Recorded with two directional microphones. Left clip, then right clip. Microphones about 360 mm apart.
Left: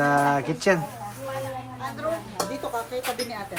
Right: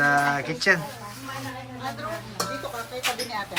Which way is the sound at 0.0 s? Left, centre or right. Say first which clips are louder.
Even; centre.